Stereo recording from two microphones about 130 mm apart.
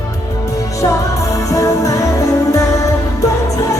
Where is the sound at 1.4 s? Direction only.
25° left (ahead or behind).